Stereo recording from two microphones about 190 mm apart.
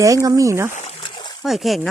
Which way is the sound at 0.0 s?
15° right (ahead or behind).